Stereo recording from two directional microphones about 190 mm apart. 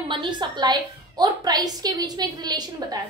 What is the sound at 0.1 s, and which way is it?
A woman's voice, 25° right (ahead or behind).